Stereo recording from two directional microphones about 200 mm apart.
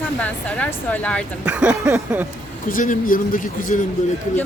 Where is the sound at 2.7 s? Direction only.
45° left (ahead or behind).